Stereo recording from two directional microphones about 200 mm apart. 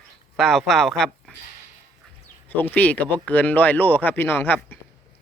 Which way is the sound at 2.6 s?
10° left (ahead or behind).